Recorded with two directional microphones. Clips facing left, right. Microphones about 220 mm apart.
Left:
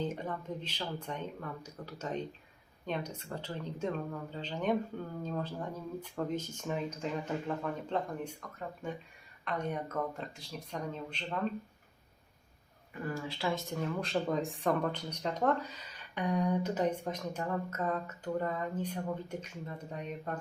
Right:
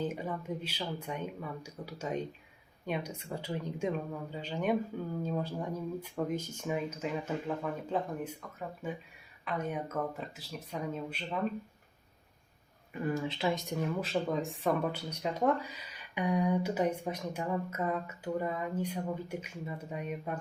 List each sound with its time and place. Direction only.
0.0 s speech: 10° right (ahead or behind)
13.1 s speech: 20° right (ahead or behind)
14.0 s speech: centre (ahead or behind)